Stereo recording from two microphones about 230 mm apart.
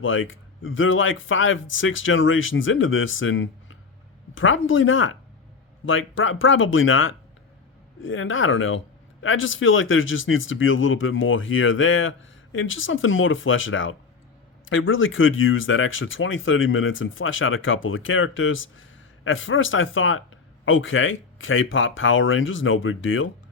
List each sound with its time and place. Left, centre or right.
0.0 s speech: left